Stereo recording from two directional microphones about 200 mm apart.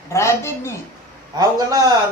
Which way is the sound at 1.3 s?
20° right (ahead or behind).